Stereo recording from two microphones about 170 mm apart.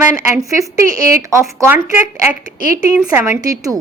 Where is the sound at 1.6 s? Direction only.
15° right (ahead or behind).